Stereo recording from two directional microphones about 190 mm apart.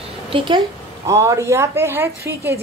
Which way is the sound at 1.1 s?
15° right (ahead or behind).